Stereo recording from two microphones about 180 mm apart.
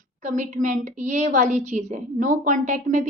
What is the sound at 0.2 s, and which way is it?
A woman's voice, 45° right (ahead or behind).